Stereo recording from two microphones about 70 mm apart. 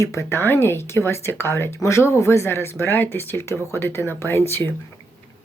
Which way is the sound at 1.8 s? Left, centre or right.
Left.